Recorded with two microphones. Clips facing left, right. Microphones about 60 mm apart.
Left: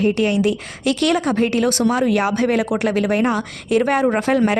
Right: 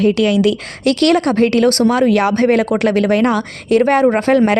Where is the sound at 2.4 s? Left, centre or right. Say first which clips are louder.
Right 5 dB; right.